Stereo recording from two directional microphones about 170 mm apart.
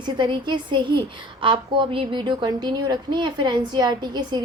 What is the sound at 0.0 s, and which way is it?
A woman's voice, 25° right (ahead or behind).